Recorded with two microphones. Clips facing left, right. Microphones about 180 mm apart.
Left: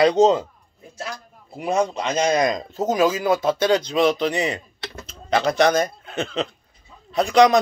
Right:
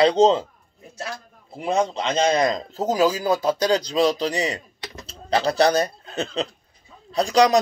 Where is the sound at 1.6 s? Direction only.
25° right (ahead or behind).